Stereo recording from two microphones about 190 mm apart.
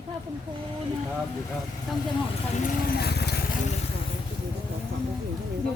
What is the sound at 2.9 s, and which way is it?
Lawn mower, 55° left (ahead or behind).